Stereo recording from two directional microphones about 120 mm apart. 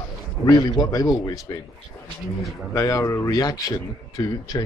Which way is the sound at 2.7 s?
30° left (ahead or behind).